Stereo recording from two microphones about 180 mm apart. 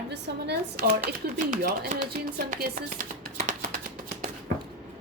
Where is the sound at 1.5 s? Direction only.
50° right (ahead or behind).